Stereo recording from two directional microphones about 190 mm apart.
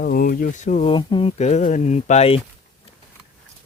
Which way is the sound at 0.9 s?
25° left (ahead or behind).